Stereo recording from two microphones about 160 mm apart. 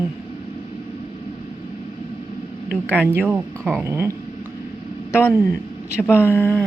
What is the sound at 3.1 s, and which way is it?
Speech, 10° right (ahead or behind).